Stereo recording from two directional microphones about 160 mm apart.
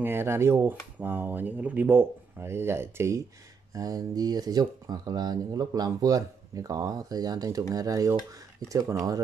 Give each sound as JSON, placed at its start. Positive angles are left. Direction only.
{"t": 0.0, "sound": "speech", "side_deg": -15}